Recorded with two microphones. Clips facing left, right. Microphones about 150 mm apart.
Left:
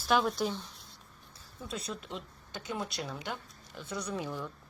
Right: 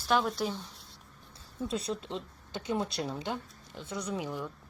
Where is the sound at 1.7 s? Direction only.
30° right (ahead or behind).